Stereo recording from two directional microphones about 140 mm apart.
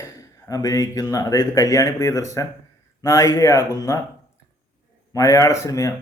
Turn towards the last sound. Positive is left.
turn(degrees=20)  # may be behind; listen again after turning